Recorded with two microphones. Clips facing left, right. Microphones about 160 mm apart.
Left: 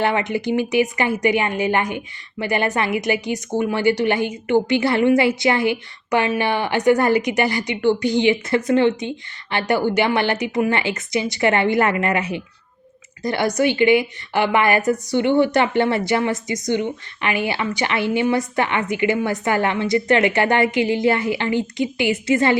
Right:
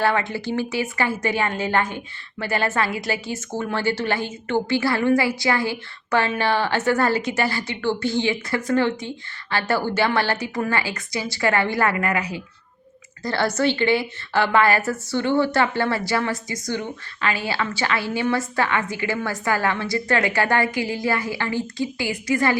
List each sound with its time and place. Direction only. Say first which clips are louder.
0.0 s a woman's voice: left 2 dB; 20° left (ahead or behind)